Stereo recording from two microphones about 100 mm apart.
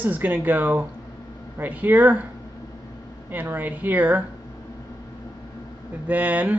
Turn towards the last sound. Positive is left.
turn(degrees=-15)  # may be behind; listen again after turning